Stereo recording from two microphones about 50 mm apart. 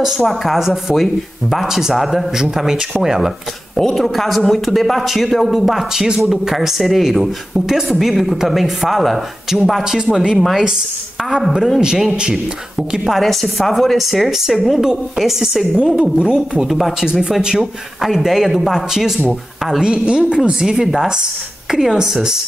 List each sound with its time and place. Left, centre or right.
0.2 s speech: centre
3.7 s speech: centre
9.8 s speech: centre
11.8 s speech: centre
13.2 s speech: centre
16.6 s speech: centre
17.0 s speech: centre